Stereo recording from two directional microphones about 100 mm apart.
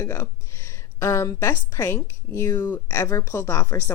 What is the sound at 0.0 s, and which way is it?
Speech, 30° left (ahead or behind).